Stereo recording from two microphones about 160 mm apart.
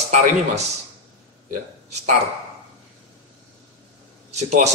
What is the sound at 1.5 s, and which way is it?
Speech, 50° right (ahead or behind).